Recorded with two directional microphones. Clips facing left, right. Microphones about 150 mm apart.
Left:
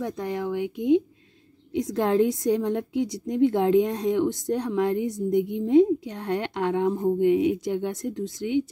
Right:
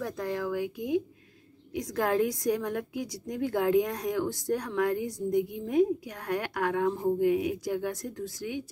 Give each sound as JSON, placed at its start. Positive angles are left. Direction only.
{"t": 0.0, "sound": "a woman's voice", "side_deg": 20}